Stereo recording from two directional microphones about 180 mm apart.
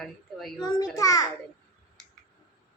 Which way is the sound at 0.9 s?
20° left (ahead or behind).